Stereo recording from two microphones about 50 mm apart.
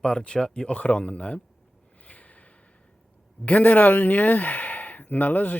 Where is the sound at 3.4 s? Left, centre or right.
Left.